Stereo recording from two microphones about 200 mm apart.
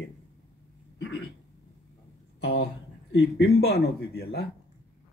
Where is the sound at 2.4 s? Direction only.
55° left (ahead or behind).